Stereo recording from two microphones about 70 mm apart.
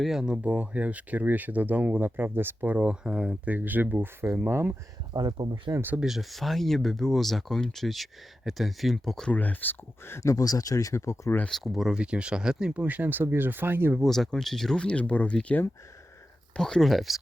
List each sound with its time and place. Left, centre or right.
0.0 s speech: centre; by 2.7 s right
2.7 s speech: centre
3.5 s speech: right
4.4 s speech: right
5.1 s speech: right
6.0 s speech: centre
9.3 s speech: left
10.2 s speech: left
11.4 s speech: centre
12.7 s speech: right
14.0 s speech: centre